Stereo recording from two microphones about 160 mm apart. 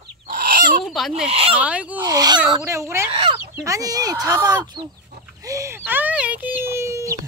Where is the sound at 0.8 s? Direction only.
Centre (ahead or behind).